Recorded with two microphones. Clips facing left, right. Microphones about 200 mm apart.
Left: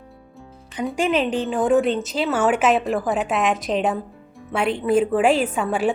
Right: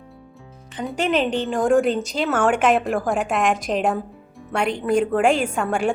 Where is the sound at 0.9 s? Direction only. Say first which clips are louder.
Even; 5° left (ahead or behind).